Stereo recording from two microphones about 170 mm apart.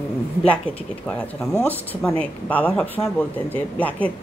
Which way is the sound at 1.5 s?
10° left (ahead or behind).